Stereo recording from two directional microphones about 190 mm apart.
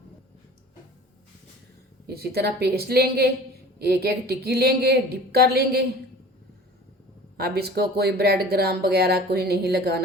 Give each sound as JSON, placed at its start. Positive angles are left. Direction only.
{"t": 2.0, "sound": "speech", "side_deg": -55}
{"t": 7.3, "sound": "speech", "side_deg": -55}